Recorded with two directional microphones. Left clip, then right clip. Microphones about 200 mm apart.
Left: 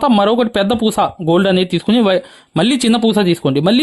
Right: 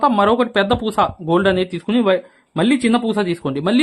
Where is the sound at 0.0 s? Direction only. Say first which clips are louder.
Left 2 dB; 45° left (ahead or behind).